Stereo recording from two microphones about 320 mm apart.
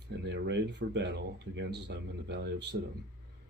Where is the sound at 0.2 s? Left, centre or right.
Right.